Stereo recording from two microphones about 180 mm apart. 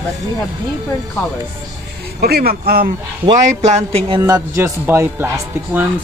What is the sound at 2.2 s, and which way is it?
Speech, 60° right (ahead or behind).